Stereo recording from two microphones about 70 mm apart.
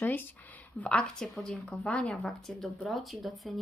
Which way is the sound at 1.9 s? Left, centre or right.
Centre.